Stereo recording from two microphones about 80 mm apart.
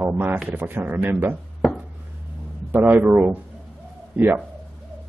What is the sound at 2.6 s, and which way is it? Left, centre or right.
A man's voice, right.